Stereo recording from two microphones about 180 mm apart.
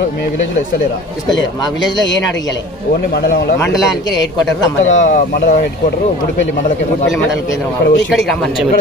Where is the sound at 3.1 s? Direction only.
65° left (ahead or behind).